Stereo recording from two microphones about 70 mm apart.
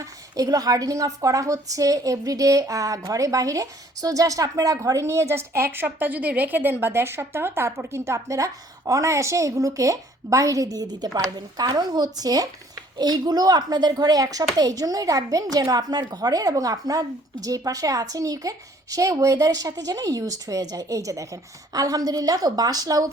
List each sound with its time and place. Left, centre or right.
0.0 s a woman's voice: right
11.3 s speech: right